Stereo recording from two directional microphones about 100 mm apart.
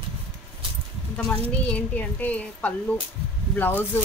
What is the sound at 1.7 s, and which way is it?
A woman's voice, 15° left (ahead or behind).